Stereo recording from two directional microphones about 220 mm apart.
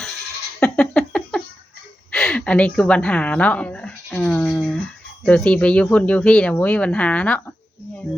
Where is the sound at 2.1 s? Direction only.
5° left (ahead or behind).